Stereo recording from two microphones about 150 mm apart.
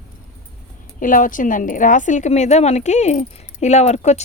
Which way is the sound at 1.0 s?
65° left (ahead or behind).